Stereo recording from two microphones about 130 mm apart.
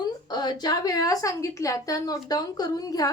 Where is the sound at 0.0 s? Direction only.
35° left (ahead or behind).